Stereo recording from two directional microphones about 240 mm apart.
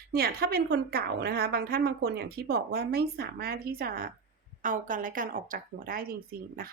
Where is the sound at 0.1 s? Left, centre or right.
Right.